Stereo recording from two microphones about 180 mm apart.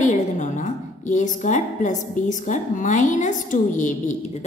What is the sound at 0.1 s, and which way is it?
A woman's voice, 40° left (ahead or behind).